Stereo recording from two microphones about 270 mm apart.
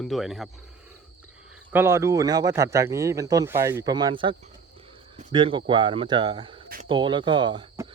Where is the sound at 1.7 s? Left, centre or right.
Centre.